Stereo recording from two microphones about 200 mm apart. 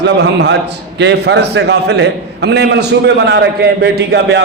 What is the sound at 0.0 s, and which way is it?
A man's voice, 60° right (ahead or behind).